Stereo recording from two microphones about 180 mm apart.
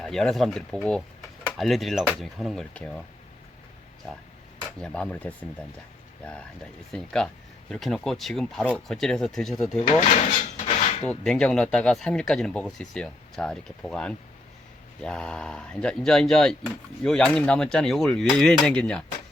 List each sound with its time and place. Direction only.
0.0 s speech: centre (ahead or behind)
4.8 s speech: 5° left (ahead or behind)
6.9 s speech: 5° left (ahead or behind)
9.8 s drawer open or close: 40° left (ahead or behind)
11.0 s speech: 5° left (ahead or behind)